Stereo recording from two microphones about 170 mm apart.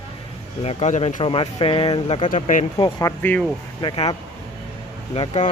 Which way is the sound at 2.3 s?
50° left (ahead or behind).